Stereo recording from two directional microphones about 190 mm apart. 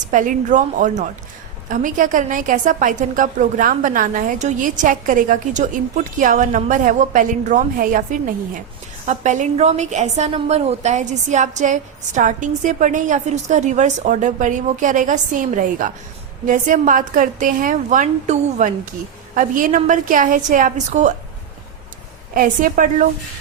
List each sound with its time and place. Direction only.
0.1 s a woman's voice: 40° right (ahead or behind)
22.4 s a woman's voice: 45° right (ahead or behind)